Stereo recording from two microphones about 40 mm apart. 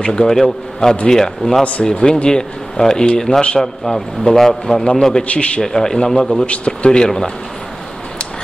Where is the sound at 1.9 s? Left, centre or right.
Centre.